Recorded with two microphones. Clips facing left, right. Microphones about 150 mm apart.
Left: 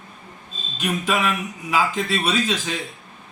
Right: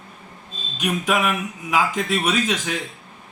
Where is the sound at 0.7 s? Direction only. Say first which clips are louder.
Right 1 dB; 15° right (ahead or behind).